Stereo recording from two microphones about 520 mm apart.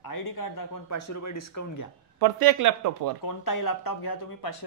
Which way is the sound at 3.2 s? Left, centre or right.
Left.